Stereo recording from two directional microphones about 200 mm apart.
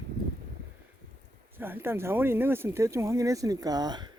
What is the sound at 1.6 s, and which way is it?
Speech, 10° right (ahead or behind).